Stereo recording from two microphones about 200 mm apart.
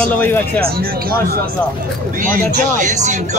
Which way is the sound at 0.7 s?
50° right (ahead or behind).